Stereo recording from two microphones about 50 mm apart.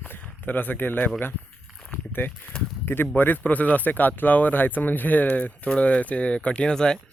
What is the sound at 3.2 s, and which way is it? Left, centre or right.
Speech, left.